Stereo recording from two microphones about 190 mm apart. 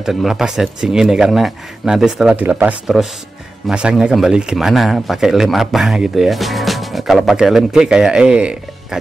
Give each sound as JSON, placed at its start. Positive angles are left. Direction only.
{"t": 0.0, "sound": "speech", "side_deg": 0}